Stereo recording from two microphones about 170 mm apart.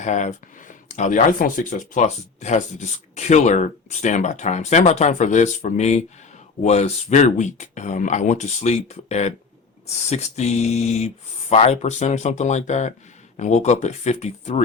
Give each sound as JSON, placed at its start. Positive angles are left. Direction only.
{"t": 0.0, "sound": "speech", "side_deg": 45}